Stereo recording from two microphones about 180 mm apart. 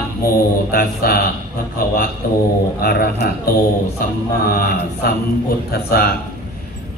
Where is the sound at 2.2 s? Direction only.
55° left (ahead or behind).